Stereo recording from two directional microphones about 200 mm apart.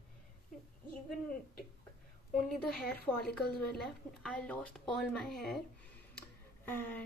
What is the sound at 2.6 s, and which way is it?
Speech, 50° left (ahead or behind).